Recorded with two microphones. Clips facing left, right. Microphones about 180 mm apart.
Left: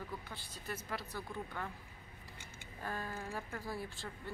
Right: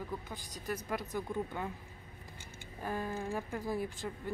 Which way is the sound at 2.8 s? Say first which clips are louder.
Right 5 dB; 15° right (ahead or behind).